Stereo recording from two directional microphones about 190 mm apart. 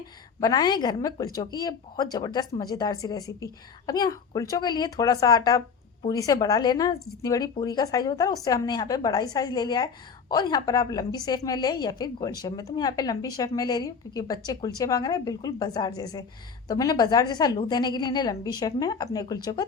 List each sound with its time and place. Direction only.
0.3 s a woman's voice: 20° left (ahead or behind)